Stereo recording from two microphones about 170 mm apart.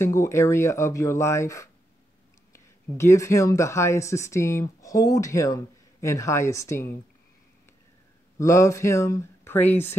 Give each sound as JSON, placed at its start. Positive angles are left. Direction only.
{"t": 0.0, "sound": "speech", "side_deg": 15}
{"t": 8.4, "sound": "speech", "side_deg": 15}